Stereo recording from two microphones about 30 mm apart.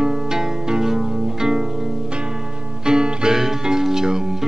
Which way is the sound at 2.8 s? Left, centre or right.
Right.